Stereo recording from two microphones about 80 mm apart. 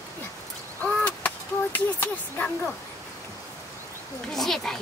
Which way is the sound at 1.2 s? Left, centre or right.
Left.